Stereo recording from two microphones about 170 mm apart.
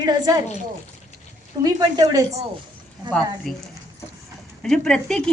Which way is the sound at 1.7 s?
20° right (ahead or behind).